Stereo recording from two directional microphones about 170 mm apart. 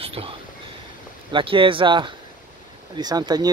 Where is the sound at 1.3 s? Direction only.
30° right (ahead or behind).